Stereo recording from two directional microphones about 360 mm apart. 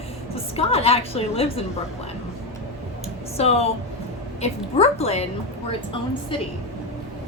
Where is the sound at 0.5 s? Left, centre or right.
Centre.